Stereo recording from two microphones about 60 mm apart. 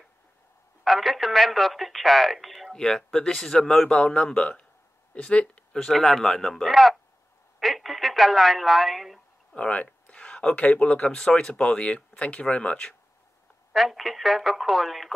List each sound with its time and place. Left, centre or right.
0.8 s a woman's voice: centre
9.6 s speech: left
13.7 s speech: centre